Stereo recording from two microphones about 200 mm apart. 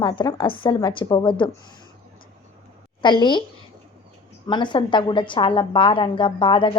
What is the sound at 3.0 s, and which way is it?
Speech, 25° left (ahead or behind).